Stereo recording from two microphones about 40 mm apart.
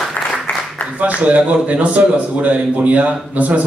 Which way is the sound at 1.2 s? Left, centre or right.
Right.